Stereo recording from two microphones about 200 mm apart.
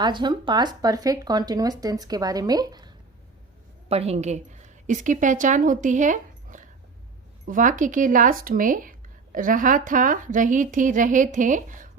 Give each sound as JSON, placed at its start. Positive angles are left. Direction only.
{"t": 0.0, "sound": "speech", "side_deg": -20}
{"t": 3.8, "sound": "a woman's voice", "side_deg": -30}